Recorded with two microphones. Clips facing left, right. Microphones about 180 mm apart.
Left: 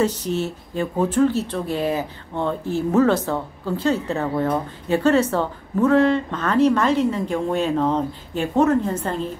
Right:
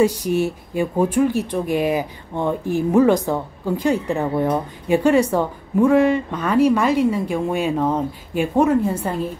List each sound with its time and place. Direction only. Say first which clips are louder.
0.0 s speech: right 4 dB; 10° right (ahead or behind)